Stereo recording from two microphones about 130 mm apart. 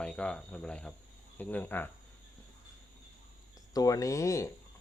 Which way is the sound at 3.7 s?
30° left (ahead or behind).